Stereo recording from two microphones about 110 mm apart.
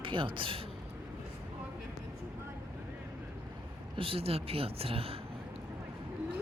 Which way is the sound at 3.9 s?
55° right (ahead or behind).